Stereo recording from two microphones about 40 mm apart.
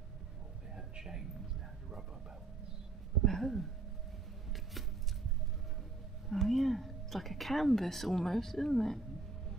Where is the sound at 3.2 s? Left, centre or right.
Centre.